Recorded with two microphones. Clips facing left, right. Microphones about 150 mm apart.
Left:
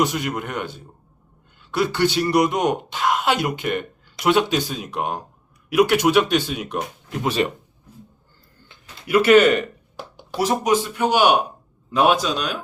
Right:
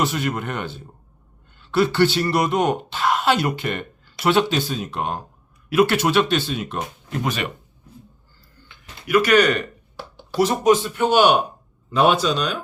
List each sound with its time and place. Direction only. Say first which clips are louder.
0.0 s speech: left 1 dB; 15° left (ahead or behind)
8.6 s speech: right 2 dB; 35° left (ahead or behind); by 12.5 s 10° left (ahead or behind)